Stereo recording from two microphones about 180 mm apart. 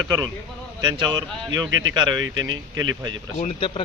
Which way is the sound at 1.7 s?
90° right.